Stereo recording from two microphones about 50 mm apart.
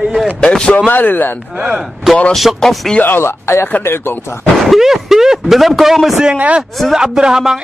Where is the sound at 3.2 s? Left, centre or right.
Left.